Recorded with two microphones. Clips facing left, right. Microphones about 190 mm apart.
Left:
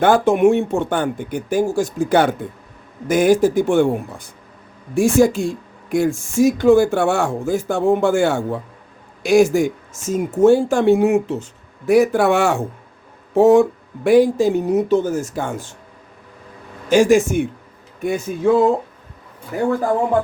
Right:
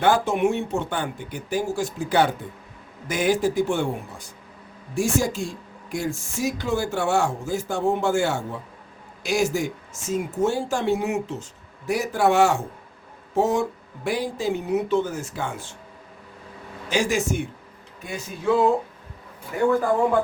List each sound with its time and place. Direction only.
0.0 s speech: 50° left (ahead or behind)
4.9 s speech: 55° left (ahead or behind)
16.9 s speech: 50° left (ahead or behind)